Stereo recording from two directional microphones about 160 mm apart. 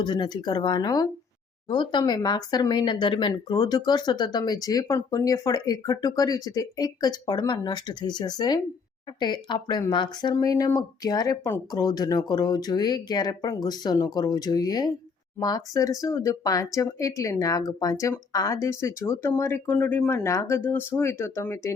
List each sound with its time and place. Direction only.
0.0 s speech: 25° left (ahead or behind)